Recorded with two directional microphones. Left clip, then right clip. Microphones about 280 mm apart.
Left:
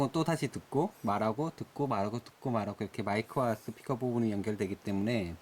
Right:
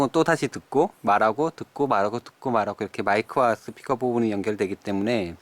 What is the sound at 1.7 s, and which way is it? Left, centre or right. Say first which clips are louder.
Speech: right 11 dB; left.